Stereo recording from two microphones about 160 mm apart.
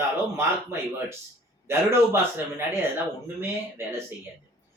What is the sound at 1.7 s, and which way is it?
Speech, 15° right (ahead or behind).